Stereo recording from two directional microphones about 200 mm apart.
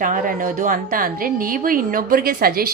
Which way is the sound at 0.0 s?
40° right (ahead or behind).